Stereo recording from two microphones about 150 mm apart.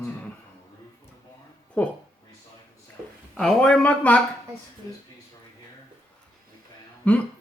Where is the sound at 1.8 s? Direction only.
5° left (ahead or behind).